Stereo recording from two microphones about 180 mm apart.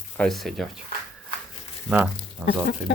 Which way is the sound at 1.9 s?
5° right (ahead or behind).